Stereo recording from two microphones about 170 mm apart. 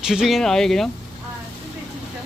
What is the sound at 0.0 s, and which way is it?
Speech, 5° right (ahead or behind).